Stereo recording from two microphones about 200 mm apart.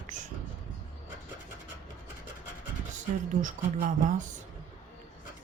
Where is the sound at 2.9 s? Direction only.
40° right (ahead or behind).